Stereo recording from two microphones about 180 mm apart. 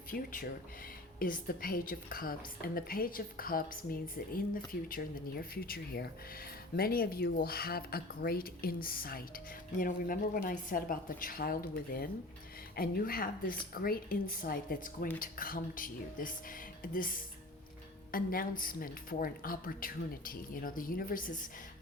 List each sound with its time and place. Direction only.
0.1 s a woman's voice: 50° left (ahead or behind)